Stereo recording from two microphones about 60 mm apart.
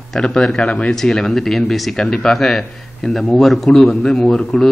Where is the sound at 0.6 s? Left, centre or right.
Left.